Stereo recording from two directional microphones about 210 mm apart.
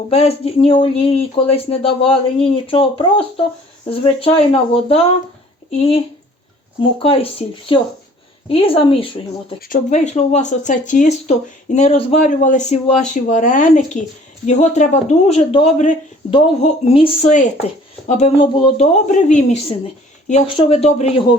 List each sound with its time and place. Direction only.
0.1 s speech: 30° left (ahead or behind)
7.0 s speech: 25° left (ahead or behind)
9.6 s speech: 40° left (ahead or behind)